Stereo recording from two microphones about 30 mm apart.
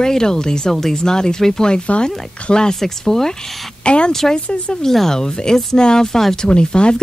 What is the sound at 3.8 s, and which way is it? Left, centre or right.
Speech, left.